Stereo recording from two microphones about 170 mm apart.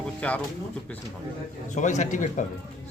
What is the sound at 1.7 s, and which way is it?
Speech, 45° left (ahead or behind).